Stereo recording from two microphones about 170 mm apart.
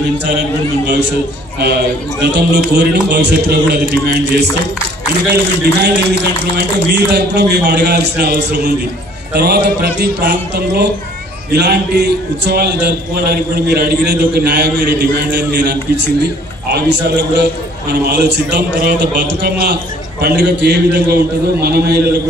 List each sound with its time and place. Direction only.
0.2 s a man's voice: 90° right
1.6 s a man's voice: 70° right (ahead or behind)